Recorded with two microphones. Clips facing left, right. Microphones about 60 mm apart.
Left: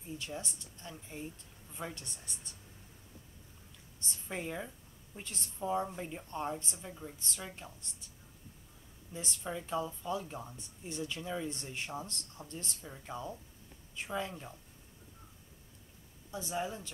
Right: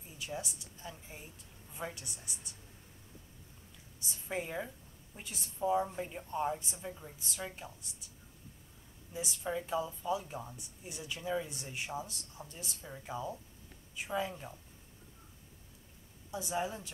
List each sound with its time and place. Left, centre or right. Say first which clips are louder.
0.2 s speech: right 1 dB; centre
4.0 s speech: right 2 dB; centre
9.1 s speech: right 3 dB; centre
16.3 s speech: right 1 dB; centre